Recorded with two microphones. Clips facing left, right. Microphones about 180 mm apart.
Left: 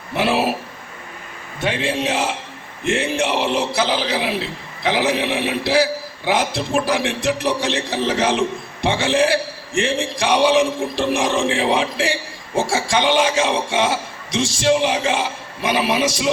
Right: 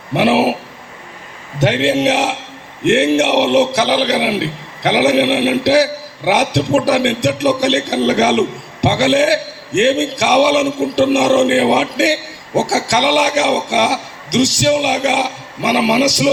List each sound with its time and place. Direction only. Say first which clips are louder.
0.1 s a man's voice: right 6 dB; 70° right (ahead or behind)
1.5 s a man's voice: right 7 dB; 80° right